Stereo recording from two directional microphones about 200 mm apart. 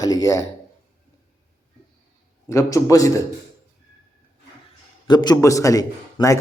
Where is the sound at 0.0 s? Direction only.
20° left (ahead or behind).